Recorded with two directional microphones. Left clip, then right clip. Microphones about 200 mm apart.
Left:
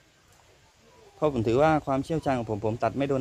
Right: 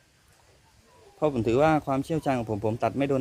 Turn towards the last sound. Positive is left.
turn(degrees=-10)  # may be behind; listen again after turning